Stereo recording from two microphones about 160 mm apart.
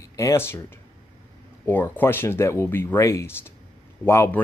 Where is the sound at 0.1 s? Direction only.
20° left (ahead or behind).